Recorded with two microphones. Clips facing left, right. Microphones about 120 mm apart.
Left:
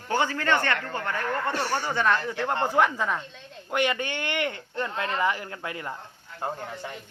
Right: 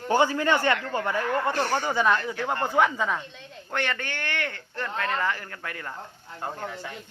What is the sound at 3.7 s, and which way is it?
Speech, 15° left (ahead or behind).